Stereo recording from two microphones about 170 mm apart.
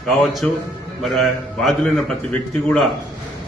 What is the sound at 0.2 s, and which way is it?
A man's voice, centre (ahead or behind).